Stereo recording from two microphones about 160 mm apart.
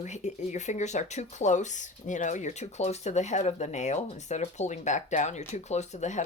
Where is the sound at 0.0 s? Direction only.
45° left (ahead or behind).